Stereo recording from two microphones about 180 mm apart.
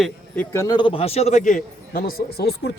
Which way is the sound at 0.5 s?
20° left (ahead or behind).